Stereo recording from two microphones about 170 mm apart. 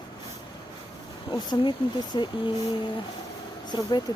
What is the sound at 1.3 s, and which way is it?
Speech, 25° left (ahead or behind).